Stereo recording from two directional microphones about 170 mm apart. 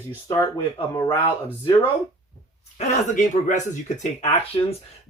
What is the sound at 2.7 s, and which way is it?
Speech, 45° left (ahead or behind).